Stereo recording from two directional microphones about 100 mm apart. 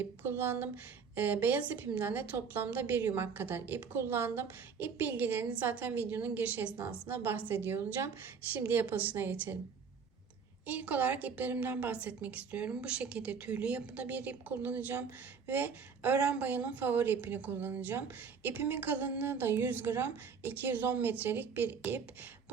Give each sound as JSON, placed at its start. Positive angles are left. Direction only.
{"t": 0.0, "sound": "a woman's voice", "side_deg": -25}
{"t": 10.7, "sound": "a woman's voice", "side_deg": -15}